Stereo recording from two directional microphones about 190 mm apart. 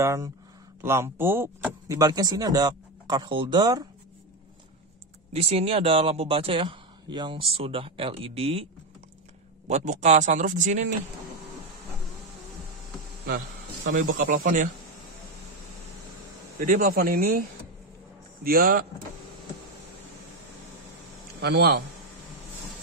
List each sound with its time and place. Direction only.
0.0 s speech: 15° right (ahead or behind)
5.3 s speech: 30° right (ahead or behind)
9.7 s speech: 35° right (ahead or behind)
13.8 s speech: 45° right (ahead or behind)
16.5 s speech: 50° right (ahead or behind)
21.4 s a man's voice: 60° right (ahead or behind)